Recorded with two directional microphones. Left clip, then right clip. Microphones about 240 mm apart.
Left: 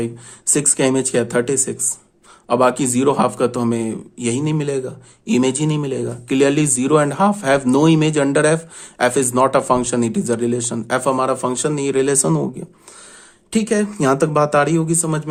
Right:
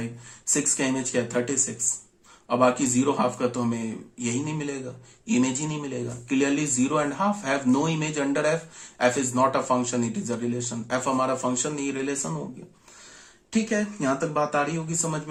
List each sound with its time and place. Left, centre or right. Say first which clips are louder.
0.5 s speech: left 9 dB; left
13.5 s speech: left 8 dB; left